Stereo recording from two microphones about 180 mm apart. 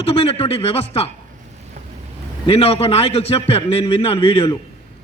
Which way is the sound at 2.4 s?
30° left (ahead or behind).